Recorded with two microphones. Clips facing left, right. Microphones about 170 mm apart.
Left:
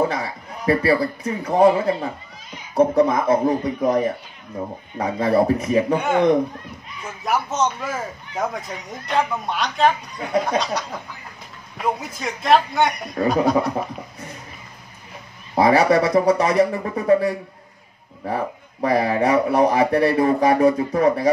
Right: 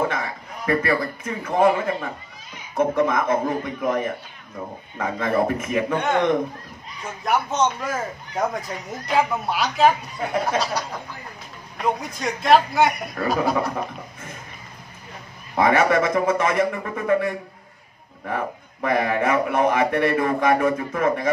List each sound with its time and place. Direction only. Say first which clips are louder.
0.0 s a man's voice: left 3 dB; 35° left (ahead or behind)
5.9 s speech: left 2 dB; 5° left (ahead or behind)
7.2 s speech: even; centre (ahead or behind)
15.5 s a man's voice: left 3 dB; 35° left (ahead or behind)